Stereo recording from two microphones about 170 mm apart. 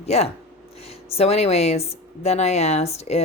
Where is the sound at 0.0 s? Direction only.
40° left (ahead or behind).